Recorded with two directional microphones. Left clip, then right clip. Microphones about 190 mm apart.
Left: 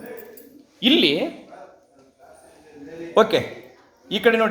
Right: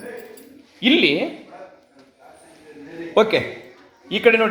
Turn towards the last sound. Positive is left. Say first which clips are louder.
# right 3 dB
turn(degrees=5)  # may be behind; listen again after turning